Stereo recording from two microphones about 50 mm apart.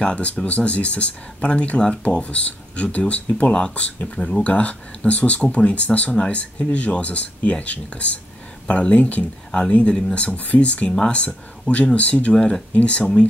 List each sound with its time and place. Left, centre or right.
0.0 s speech: left